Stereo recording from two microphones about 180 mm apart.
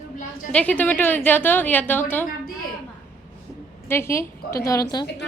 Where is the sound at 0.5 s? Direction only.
10° left (ahead or behind).